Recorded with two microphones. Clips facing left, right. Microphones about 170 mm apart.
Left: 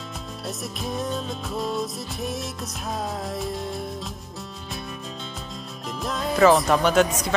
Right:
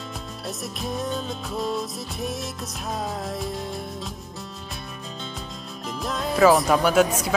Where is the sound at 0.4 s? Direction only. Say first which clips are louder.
Even; centre (ahead or behind).